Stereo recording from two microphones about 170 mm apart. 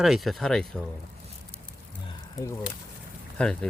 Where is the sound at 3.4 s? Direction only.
5° left (ahead or behind).